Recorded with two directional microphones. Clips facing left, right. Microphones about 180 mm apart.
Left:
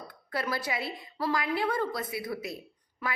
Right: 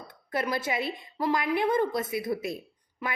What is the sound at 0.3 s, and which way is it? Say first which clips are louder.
A woman's voice: right 3 dB; 20° right (ahead or behind).